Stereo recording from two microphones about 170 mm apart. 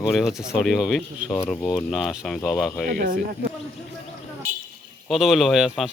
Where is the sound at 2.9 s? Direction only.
55° right (ahead or behind).